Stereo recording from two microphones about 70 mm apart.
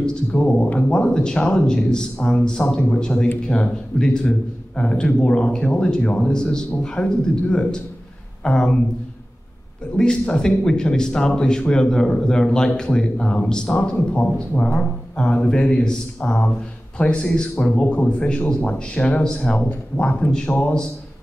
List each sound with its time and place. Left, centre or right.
0.0 s speech: centre
9.9 s speech: centre